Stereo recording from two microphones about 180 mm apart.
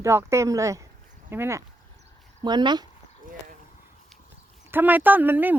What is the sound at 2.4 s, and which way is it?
Speech, 25° right (ahead or behind).